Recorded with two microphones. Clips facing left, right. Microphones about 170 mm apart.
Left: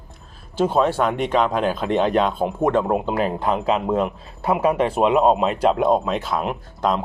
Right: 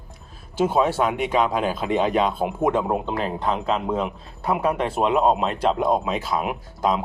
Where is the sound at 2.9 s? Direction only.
5° left (ahead or behind).